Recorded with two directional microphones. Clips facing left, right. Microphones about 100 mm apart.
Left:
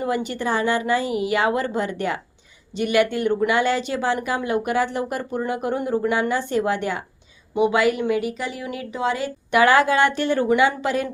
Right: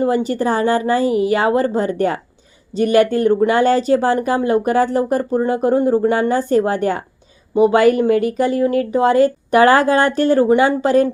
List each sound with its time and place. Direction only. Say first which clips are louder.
0.0 s speech: right 7 dB; 35° right (ahead or behind)